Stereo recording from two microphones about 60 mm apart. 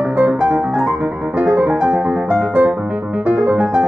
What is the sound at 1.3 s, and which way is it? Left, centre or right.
Music, right.